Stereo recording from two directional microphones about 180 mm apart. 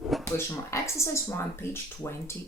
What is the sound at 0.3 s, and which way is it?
Speech, 15° left (ahead or behind).